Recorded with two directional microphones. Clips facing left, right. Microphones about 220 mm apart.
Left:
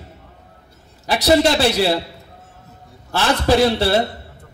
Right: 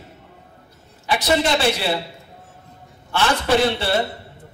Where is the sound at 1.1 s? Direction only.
40° left (ahead or behind).